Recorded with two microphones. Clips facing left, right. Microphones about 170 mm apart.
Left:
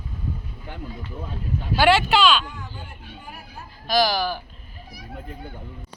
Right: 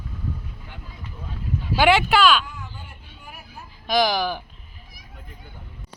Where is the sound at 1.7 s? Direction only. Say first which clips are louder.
Even; 15° right (ahead or behind).